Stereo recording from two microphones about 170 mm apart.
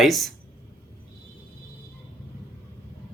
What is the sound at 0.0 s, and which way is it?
Speech, centre (ahead or behind).